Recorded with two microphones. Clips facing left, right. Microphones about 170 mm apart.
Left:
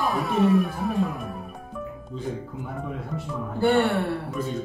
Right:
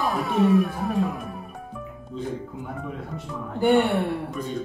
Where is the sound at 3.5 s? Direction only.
15° right (ahead or behind).